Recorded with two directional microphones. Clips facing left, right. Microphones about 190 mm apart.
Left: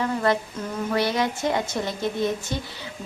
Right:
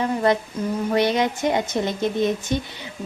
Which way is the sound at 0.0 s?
20° right (ahead or behind).